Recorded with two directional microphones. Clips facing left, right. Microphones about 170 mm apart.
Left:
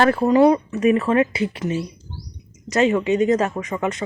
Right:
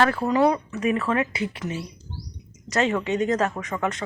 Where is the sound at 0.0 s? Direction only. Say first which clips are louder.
Left 5 dB; 30° left (ahead or behind).